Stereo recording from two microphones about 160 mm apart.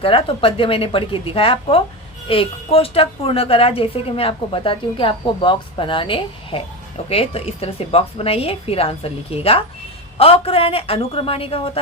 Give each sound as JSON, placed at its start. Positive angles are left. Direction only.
{"t": 0.0, "sound": "a woman's voice", "side_deg": 35}